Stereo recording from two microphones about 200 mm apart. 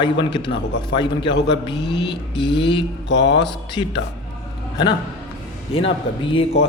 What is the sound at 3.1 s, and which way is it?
Speech, 60° left (ahead or behind).